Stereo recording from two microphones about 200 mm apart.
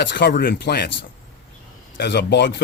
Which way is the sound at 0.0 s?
60° left (ahead or behind).